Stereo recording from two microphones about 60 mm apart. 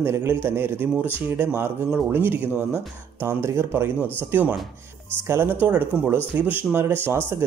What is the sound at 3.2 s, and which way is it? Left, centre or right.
Speech, right.